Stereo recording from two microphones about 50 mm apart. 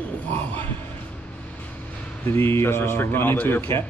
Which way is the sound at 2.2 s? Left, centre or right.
Left.